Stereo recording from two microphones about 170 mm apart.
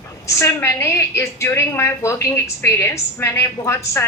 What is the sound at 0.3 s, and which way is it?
A woman's voice, 15° left (ahead or behind).